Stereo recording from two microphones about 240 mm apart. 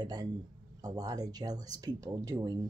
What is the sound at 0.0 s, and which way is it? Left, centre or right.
Speech, centre.